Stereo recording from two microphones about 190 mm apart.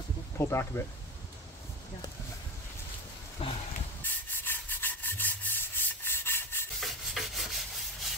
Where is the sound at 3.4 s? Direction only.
30° left (ahead or behind).